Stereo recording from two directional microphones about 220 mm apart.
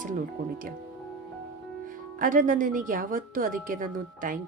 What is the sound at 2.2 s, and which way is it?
A woman's voice, 40° right (ahead or behind).